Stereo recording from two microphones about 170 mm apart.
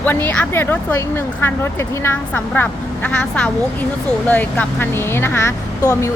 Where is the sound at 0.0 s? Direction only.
10° left (ahead or behind).